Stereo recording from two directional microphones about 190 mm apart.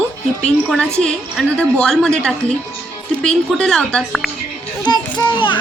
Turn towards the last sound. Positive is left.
turn(degrees=25)  # may be behind; listen again after turning